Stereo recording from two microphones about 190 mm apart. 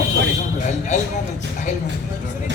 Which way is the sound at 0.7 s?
40° left (ahead or behind).